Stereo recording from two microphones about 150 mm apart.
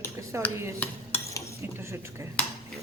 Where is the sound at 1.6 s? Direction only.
20° right (ahead or behind).